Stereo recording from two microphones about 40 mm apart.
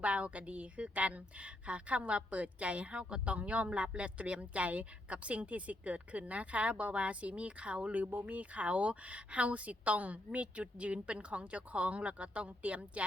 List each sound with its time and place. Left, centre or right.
0.0 s speech: right
7.9 s speech: right